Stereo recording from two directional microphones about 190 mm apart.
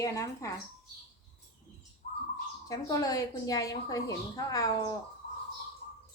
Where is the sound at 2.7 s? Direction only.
20° left (ahead or behind).